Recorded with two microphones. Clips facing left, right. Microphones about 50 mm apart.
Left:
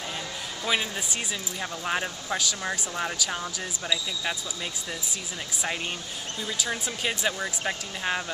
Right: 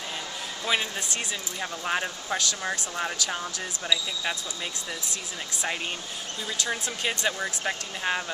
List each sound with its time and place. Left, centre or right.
0.7 s speech: centre
6.7 s speech: centre